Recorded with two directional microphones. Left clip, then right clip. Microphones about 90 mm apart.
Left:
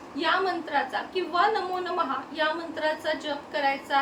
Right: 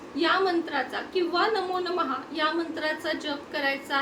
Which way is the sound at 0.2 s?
20° right (ahead or behind).